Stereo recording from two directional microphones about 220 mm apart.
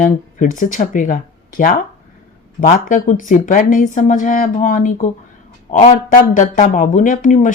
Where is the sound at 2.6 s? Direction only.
40° left (ahead or behind).